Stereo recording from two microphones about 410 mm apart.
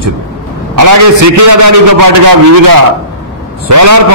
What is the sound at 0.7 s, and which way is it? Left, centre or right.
A man's voice, right.